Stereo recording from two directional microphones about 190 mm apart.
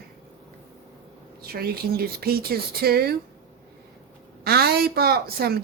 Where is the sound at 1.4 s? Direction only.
55° right (ahead or behind).